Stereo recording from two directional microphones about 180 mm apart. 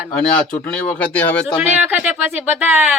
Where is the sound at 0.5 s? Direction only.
10° left (ahead or behind).